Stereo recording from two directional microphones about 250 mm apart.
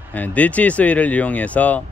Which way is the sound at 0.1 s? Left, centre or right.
Centre.